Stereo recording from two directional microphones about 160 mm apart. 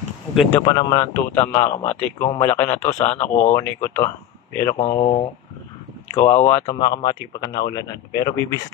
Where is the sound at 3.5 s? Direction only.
20° left (ahead or behind).